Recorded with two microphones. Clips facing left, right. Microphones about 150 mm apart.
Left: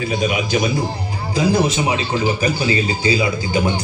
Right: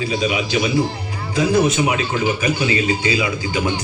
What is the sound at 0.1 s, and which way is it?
Speech, 50° left (ahead or behind).